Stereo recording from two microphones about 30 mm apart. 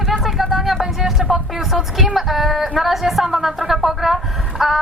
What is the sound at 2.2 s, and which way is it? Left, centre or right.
A woman's voice, centre.